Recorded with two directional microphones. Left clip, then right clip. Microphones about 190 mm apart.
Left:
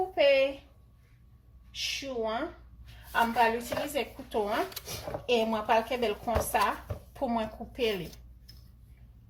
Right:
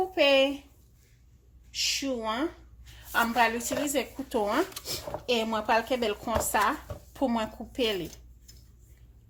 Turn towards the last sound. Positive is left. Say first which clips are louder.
# right 2 dB
turn(degrees=-50)  # may be behind; listen again after turning